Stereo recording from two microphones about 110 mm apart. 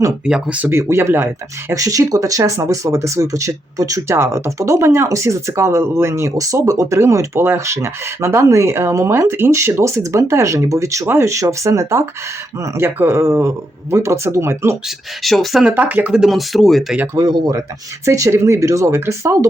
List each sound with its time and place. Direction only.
0.3 s speech: 10° right (ahead or behind); by 14.8 s 25° right (ahead or behind)
14.8 s speech: centre (ahead or behind)
15.6 s speech: 15° right (ahead or behind); by 17.0 s centre (ahead or behind)
17.2 s speech: 35° right (ahead or behind)